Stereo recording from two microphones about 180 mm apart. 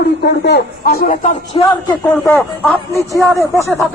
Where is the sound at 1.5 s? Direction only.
30° left (ahead or behind).